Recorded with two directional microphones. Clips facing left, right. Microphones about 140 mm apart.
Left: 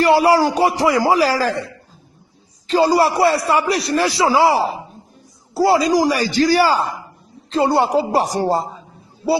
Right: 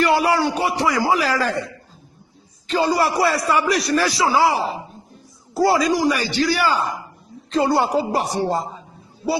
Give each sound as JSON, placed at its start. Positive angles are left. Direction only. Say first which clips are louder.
{"t": 0.0, "sound": "a man's voice", "louder": "left 4 dB", "side_deg": 30}
{"t": 2.6, "sound": "a man's voice", "louder": "left 4 dB", "side_deg": 35}